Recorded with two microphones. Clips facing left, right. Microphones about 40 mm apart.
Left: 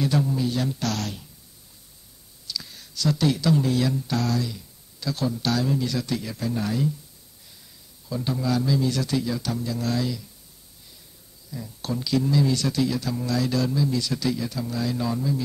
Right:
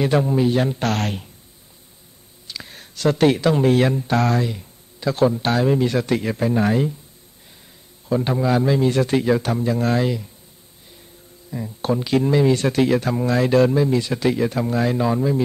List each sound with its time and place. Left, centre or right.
0.0 s speech: right
2.4 s speech: right
8.1 s speech: right
11.5 s speech: right